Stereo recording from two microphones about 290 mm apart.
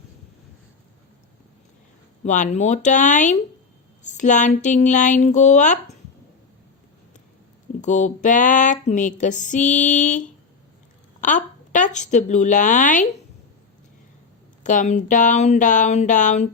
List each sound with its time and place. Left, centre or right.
2.2 s speech: left
7.8 s a woman's voice: left
14.6 s speech: left